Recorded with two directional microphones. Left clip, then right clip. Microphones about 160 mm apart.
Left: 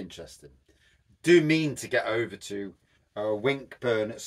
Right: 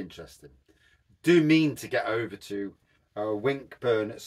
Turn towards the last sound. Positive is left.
turn(degrees=15)  # may be behind; listen again after turning